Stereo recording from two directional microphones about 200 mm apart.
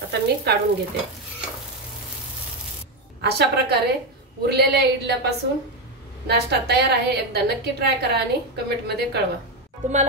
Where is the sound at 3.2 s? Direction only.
55° right (ahead or behind).